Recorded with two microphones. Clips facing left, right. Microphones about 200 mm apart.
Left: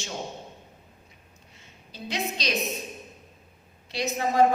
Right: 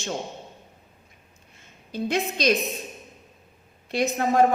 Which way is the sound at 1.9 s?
50° right (ahead or behind).